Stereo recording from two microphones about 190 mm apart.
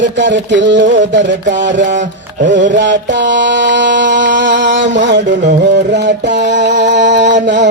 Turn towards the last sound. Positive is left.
turn(degrees=-65)  # may be behind; listen again after turning